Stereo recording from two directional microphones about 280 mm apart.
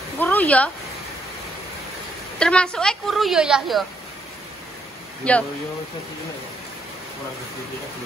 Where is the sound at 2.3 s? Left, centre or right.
Centre.